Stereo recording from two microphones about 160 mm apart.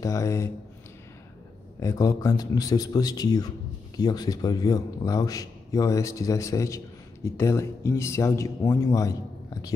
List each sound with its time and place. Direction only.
0.0 s speech: 20° left (ahead or behind)
1.8 s speech: 20° left (ahead or behind)